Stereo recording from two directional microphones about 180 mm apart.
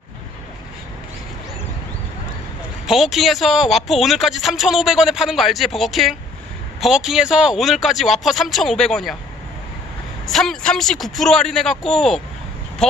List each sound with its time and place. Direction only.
2.9 s speech: centre (ahead or behind)
10.2 s speech: centre (ahead or behind)